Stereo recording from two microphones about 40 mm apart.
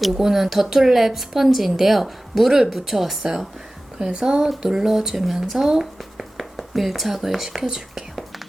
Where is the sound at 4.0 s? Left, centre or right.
Centre.